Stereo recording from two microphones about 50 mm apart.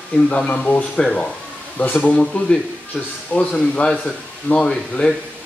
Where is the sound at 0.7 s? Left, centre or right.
Left.